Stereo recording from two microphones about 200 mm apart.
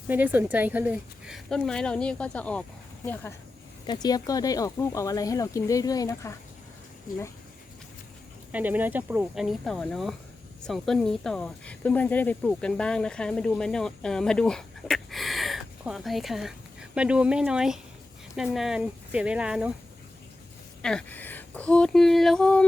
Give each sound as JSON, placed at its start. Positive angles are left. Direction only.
{"t": 0.1, "sound": "speech", "side_deg": -10}
{"t": 3.8, "sound": "speech", "side_deg": 20}
{"t": 8.5, "sound": "speech", "side_deg": -10}
{"t": 20.8, "sound": "speech", "side_deg": 5}